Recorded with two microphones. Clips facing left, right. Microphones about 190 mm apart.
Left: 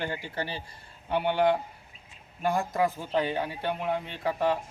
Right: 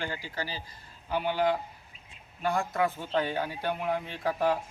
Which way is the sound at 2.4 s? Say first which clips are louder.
Left 2 dB; 20° left (ahead or behind).